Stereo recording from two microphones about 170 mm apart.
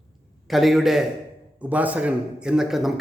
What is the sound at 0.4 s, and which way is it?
A man's voice, centre (ahead or behind).